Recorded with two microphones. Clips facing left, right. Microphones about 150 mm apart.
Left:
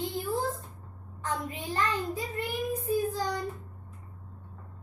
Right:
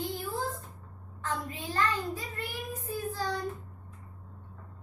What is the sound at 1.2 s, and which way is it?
Child singing, 20° left (ahead or behind).